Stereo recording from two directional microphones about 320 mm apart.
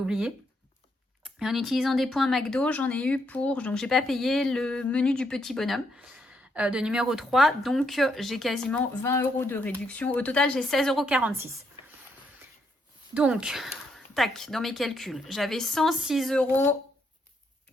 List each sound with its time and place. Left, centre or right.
0.0 s speech: centre
11.8 s a sound: centre
13.1 s speech: centre